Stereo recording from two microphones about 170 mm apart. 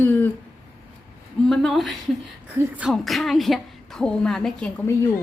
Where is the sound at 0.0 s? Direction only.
10° left (ahead or behind).